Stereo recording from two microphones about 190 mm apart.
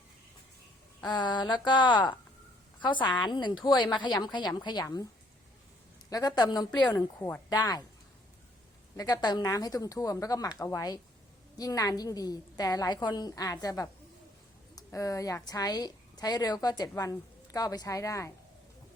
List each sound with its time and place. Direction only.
1.0 s a woman's voice: 25° left (ahead or behind)
3.2 s a woman's voice: 25° left (ahead or behind)
6.1 s a woman's voice: 20° left (ahead or behind)
9.0 s a woman's voice: 20° left (ahead or behind)